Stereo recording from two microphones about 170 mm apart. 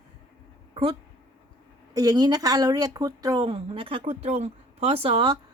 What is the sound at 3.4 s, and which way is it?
Speech, 35° right (ahead or behind).